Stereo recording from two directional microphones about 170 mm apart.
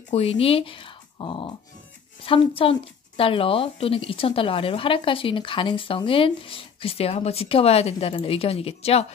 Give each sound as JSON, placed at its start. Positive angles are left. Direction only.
{"t": 0.1, "sound": "speech", "side_deg": 35}